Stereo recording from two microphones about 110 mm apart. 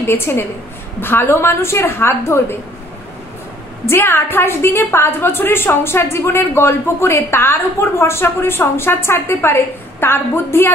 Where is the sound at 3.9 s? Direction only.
20° left (ahead or behind).